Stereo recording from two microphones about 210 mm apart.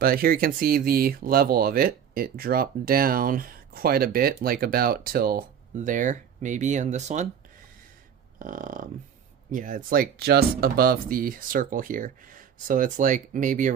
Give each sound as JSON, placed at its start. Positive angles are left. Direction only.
{"t": 0.0, "sound": "speech", "side_deg": -45}
{"t": 8.4, "sound": "speech", "side_deg": -40}